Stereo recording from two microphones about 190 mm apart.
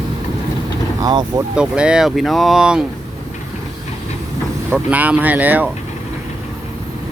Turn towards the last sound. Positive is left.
turn(degrees=-10)  # may be behind; listen again after turning